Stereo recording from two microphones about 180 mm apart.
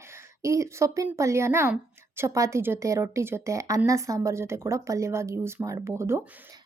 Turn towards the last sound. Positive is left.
turn(degrees=-15)  # may be behind; listen again after turning